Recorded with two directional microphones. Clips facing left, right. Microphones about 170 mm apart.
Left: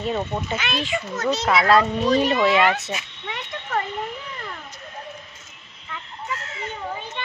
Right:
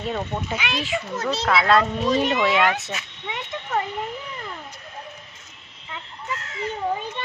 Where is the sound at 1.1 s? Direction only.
30° right (ahead or behind).